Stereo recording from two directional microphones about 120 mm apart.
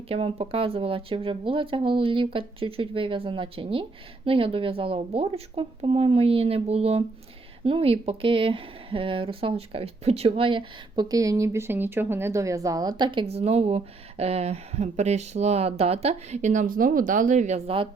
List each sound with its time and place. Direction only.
0.1 s speech: 55° right (ahead or behind)
11.1 s a woman's voice: 30° right (ahead or behind)
13.2 s speech: 60° right (ahead or behind); by 17.6 s 75° right (ahead or behind)